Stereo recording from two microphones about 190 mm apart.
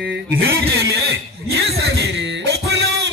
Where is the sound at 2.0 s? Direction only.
70° right (ahead or behind).